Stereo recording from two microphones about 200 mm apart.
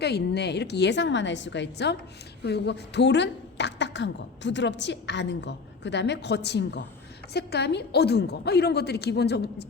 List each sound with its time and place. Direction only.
0.0 s a woman's voice: 55° left (ahead or behind)